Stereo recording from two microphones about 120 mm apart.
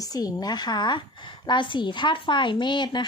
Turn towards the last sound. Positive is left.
turn(degrees=40)  # may be behind; listen again after turning